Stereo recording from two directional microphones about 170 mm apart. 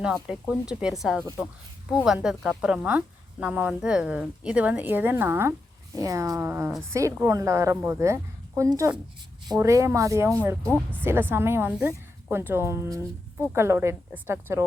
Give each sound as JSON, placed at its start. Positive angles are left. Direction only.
{"t": 0.0, "sound": "a woman's voice", "side_deg": -5}
{"t": 10.6, "sound": "speech", "side_deg": 5}
{"t": 11.0, "sound": "a woman's voice", "side_deg": -10}